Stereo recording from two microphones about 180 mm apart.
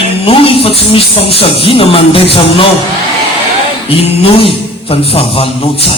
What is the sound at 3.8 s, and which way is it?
Speech, 30° left (ahead or behind).